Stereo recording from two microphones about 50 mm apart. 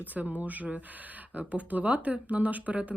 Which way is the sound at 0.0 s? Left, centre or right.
Right.